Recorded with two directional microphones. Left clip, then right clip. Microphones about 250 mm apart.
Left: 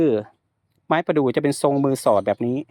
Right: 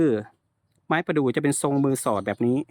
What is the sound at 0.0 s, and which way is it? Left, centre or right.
Speech, centre.